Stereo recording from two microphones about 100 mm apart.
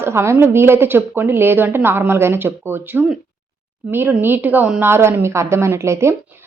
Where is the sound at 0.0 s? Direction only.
25° right (ahead or behind).